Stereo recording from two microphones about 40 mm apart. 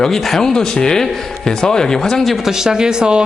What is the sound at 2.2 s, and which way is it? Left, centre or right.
Speech, centre.